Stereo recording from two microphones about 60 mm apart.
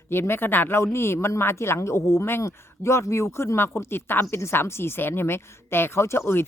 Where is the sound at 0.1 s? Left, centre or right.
Left.